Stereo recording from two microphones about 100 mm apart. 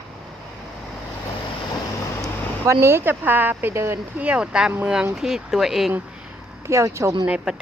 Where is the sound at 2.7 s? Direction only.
25° right (ahead or behind).